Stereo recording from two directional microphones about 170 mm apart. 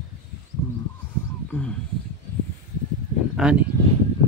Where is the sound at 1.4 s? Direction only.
5° left (ahead or behind).